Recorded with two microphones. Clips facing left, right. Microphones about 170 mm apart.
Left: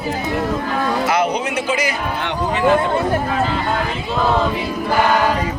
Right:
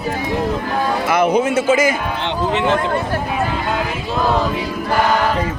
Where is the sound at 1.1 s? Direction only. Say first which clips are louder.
Right 4 dB; 55° right (ahead or behind).